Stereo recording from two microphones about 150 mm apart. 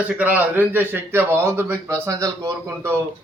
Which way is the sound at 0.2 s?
10° right (ahead or behind).